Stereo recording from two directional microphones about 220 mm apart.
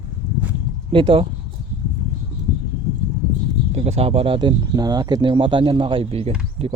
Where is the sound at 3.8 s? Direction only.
30° right (ahead or behind).